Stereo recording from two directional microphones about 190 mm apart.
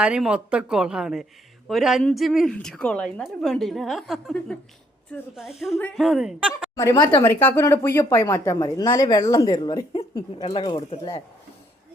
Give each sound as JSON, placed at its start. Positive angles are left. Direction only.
{"t": 0.0, "sound": "speech", "side_deg": -5}
{"t": 6.7, "sound": "speech", "side_deg": 20}